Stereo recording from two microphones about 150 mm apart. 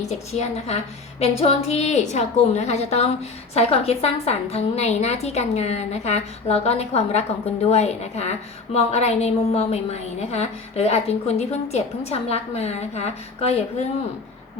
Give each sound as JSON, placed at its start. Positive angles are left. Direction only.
{"t": 0.0, "sound": "a woman's voice", "side_deg": 45}